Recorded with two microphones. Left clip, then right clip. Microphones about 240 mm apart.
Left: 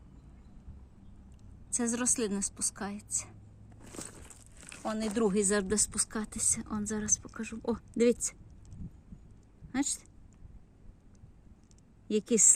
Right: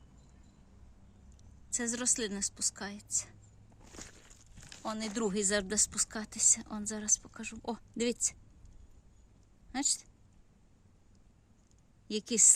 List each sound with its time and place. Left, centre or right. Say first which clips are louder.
1.7 s a woman's voice: left 2 dB; centre
3.9 s crumpling: left 5 dB; left
4.8 s a woman's voice: left 4 dB; centre
9.7 s a woman's voice: even; centre
12.0 s a woman's voice: left 2 dB; centre